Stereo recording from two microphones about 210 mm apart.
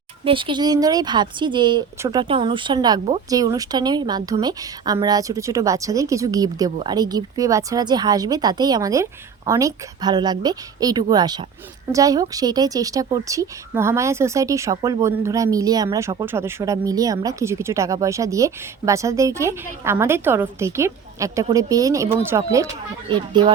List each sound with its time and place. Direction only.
0.3 s a woman's voice: 25° right (ahead or behind)